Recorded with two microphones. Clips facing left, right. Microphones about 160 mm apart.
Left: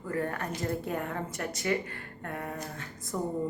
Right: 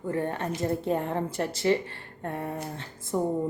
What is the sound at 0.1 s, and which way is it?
A woman's voice, 25° right (ahead or behind).